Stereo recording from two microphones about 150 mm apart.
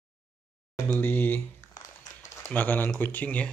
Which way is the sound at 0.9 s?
15° left (ahead or behind).